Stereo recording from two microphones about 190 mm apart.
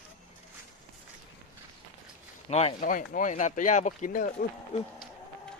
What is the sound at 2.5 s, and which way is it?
Speech, 35° left (ahead or behind).